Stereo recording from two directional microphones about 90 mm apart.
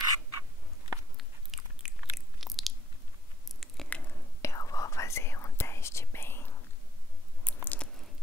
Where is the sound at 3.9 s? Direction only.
20° left (ahead or behind).